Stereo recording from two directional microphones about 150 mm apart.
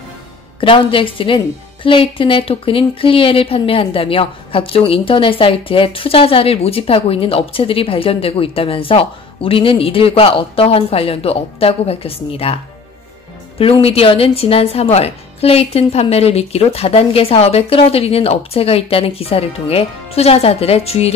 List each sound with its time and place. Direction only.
0.6 s a woman's voice: 35° left (ahead or behind)
13.6 s a woman's voice: 40° left (ahead or behind)